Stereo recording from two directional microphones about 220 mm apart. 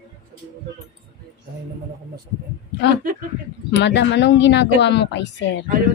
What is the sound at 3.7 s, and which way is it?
Speech, 55° left (ahead or behind).